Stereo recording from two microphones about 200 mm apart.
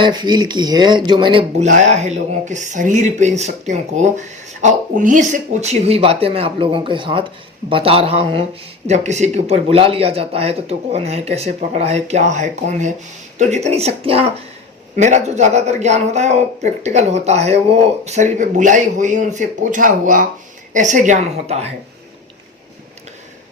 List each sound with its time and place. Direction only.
0.0 s speech: 20° right (ahead or behind)